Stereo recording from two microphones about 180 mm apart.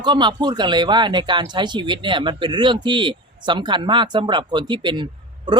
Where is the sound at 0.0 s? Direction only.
25° right (ahead or behind).